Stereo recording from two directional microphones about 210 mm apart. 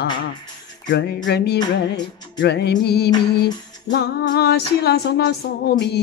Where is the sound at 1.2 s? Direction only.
55° left (ahead or behind).